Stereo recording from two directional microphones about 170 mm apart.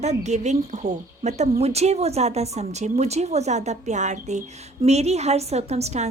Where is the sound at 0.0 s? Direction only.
40° right (ahead or behind).